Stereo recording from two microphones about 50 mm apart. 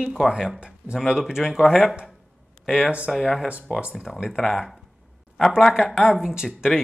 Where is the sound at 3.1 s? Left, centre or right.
Centre.